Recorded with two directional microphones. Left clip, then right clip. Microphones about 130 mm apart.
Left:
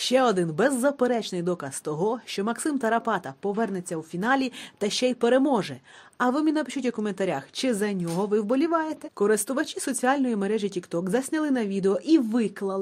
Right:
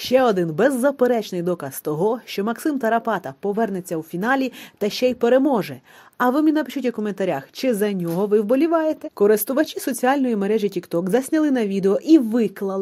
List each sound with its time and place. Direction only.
0.0 s speech: 20° right (ahead or behind); by 12.7 s 35° right (ahead or behind)